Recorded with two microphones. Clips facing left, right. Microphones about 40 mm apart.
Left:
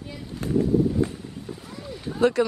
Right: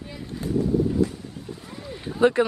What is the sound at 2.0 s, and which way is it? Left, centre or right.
Run, centre.